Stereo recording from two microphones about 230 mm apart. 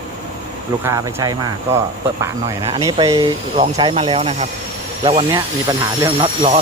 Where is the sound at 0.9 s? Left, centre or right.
Centre.